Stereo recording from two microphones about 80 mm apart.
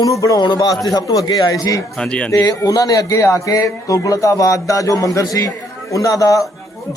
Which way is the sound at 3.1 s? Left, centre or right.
Left.